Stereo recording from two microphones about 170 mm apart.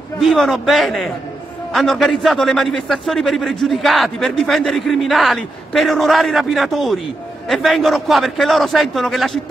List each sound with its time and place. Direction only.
0.2 s a man's voice: centre (ahead or behind)